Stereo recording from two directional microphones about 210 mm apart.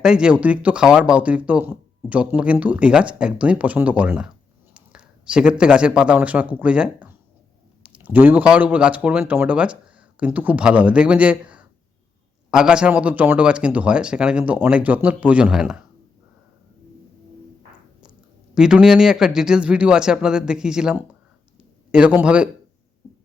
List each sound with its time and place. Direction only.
0.0 s speech: 5° right (ahead or behind)
18.5 s speech: 5° right (ahead or behind)